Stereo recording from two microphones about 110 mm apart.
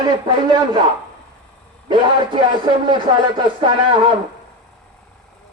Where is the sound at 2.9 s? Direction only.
45° right (ahead or behind).